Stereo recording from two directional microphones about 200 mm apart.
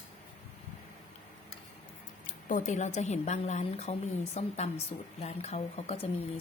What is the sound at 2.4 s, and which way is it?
A woman's voice, 40° left (ahead or behind).